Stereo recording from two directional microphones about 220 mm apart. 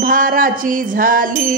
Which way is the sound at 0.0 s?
40° right (ahead or behind).